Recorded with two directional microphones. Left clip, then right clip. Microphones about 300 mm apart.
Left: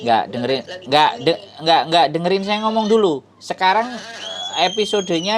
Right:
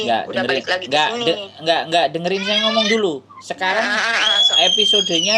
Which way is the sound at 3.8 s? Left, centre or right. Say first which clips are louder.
Right 5 dB; right.